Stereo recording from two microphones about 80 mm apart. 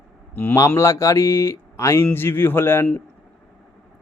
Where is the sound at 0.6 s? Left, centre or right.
Left.